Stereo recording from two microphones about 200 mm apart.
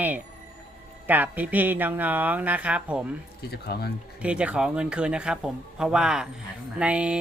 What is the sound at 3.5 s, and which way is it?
Speech, 50° left (ahead or behind).